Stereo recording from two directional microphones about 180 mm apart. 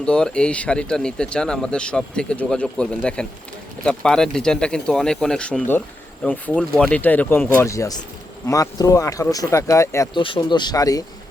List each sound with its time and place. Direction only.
0.0 s speech: 5° left (ahead or behind)
10.2 s speech: 30° left (ahead or behind)